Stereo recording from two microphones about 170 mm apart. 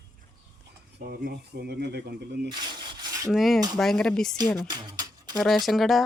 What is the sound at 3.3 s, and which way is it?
Speech, centre (ahead or behind).